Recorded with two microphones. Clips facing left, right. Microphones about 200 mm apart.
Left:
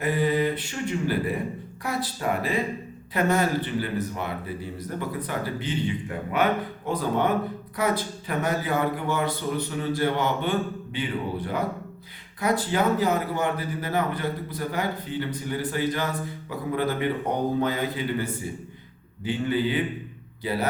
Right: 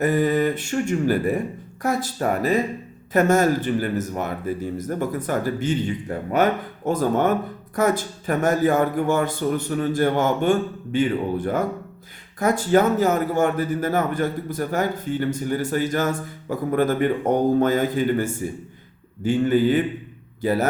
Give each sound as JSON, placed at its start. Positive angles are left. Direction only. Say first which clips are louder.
{"t": 0.0, "sound": "speech", "louder": "right 4 dB", "side_deg": -45}